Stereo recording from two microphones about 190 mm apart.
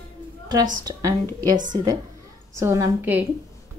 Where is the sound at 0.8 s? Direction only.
20° right (ahead or behind).